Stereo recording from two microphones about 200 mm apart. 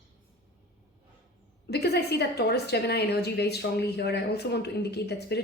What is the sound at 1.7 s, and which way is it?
A woman's voice, 55° left (ahead or behind).